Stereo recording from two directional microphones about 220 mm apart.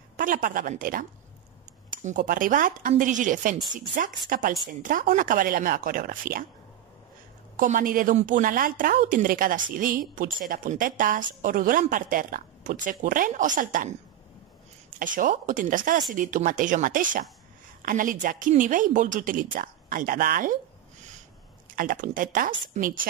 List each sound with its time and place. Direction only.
0.2 s a woman's voice: 40° right (ahead or behind)
7.5 s a woman's voice: 40° right (ahead or behind)
15.0 s a woman's voice: 40° right (ahead or behind)
21.7 s a woman's voice: 40° right (ahead or behind)